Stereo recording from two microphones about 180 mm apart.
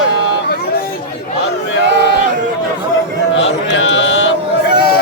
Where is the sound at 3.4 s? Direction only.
85° left.